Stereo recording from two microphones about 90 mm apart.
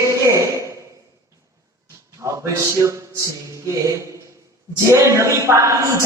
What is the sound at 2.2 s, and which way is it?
A woman's voice, 35° right (ahead or behind).